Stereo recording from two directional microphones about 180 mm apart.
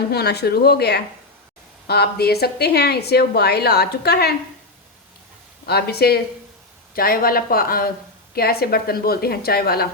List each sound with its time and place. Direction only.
0.1 s a woman's voice: 60° left (ahead or behind)
5.6 s a woman's voice: 60° left (ahead or behind)